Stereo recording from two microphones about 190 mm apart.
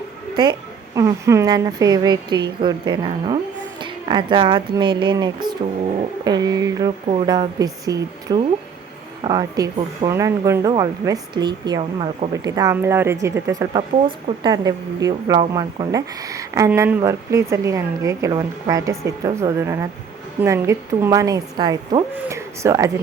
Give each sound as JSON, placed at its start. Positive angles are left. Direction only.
{"t": 0.9, "sound": "speech", "side_deg": -15}
{"t": 12.3, "sound": "speech", "side_deg": -15}